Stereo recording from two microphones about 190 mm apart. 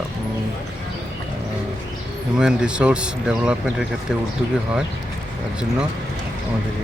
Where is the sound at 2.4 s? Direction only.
5° right (ahead or behind).